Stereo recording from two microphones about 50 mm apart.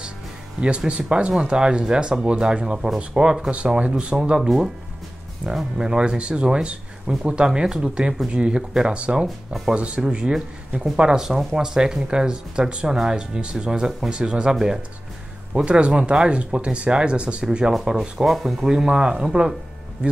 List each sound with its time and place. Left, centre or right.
0.6 s speech: right
4.4 s speech: centre
18.2 s speech: centre
18.7 s speech: centre